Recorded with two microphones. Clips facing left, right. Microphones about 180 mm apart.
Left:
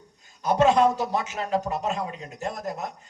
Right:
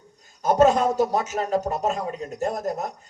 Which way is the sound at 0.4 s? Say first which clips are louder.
Right 1 dB; 45° right (ahead or behind).